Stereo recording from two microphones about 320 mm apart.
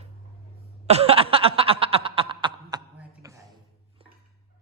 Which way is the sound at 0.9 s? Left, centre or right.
Centre.